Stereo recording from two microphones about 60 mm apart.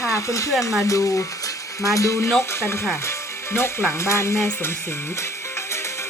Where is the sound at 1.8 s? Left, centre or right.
Left.